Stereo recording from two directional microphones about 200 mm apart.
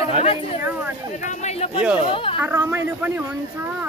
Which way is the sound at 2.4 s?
10° right (ahead or behind).